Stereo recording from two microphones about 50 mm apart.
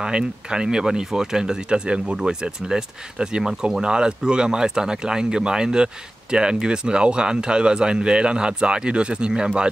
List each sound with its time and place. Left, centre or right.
0.0 s speech: centre